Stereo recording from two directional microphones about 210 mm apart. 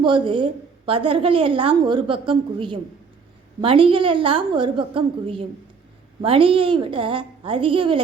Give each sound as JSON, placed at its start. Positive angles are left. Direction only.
{"t": 0.0, "sound": "a woman's voice", "side_deg": -25}